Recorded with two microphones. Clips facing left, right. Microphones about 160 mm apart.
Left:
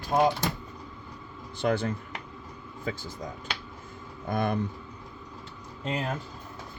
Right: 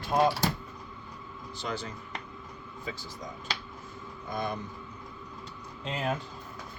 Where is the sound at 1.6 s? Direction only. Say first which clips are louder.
Left 10 dB; 55° left (ahead or behind).